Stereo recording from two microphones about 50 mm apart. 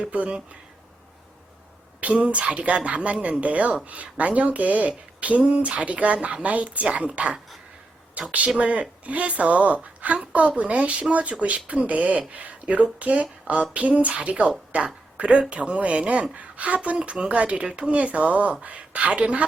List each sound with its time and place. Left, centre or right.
0.0 s speech: right
2.0 s speech: right